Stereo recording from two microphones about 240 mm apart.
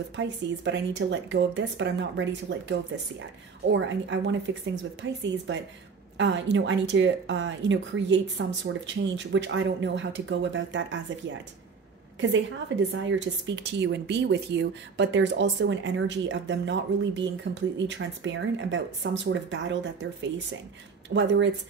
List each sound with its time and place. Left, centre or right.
0.1 s a woman's voice: right
21.1 s a woman's voice: right